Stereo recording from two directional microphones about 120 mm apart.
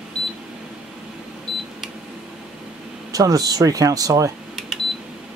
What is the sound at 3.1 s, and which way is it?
Speech, 30° right (ahead or behind).